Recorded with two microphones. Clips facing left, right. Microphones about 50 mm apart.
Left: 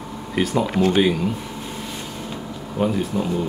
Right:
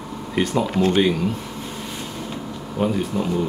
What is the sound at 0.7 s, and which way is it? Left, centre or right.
Speech, left.